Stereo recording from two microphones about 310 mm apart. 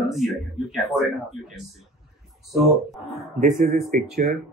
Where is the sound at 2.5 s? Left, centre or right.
Centre.